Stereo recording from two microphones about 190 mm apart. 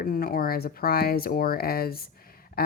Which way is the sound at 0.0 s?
50° left (ahead or behind).